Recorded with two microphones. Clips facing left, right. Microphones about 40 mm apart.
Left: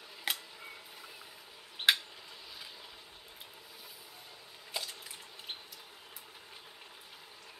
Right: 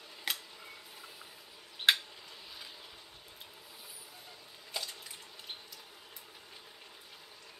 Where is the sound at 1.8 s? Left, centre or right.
Left.